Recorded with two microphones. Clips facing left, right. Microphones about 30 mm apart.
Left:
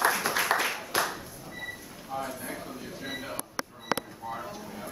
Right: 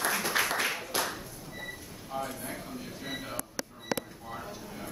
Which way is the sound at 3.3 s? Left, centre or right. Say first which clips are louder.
Left 2 dB; left.